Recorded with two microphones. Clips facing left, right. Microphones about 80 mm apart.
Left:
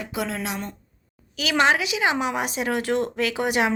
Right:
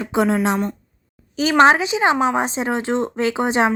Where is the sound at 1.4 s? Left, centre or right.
Right.